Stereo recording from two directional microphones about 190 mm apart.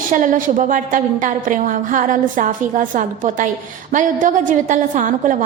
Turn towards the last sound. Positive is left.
turn(degrees=-45)  # may be behind; listen again after turning